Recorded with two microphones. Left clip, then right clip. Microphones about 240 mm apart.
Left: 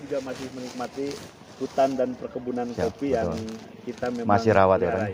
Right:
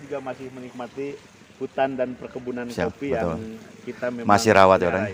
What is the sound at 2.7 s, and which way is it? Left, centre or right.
Speech, right.